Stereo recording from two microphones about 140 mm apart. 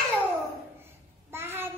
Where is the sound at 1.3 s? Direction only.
15° right (ahead or behind).